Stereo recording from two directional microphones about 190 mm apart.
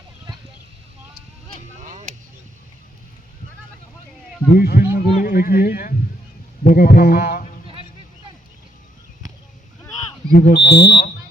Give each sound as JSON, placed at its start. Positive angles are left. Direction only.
{"t": 1.8, "sound": "vehicle", "side_deg": -40}
{"t": 4.4, "sound": "speech", "side_deg": 55}
{"t": 10.3, "sound": "speech", "side_deg": 55}